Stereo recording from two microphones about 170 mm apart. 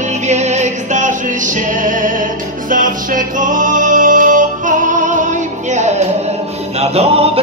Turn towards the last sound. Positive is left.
turn(degrees=-35)  # may be behind; listen again after turning